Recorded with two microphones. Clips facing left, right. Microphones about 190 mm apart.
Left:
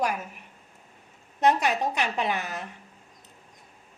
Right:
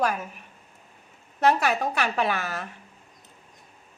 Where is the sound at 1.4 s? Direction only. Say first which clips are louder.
Right 1 dB; 20° left (ahead or behind).